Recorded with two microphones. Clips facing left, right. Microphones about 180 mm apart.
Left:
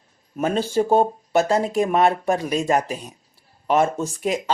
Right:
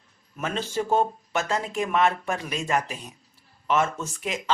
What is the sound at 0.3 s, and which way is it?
Speech, 35° left (ahead or behind).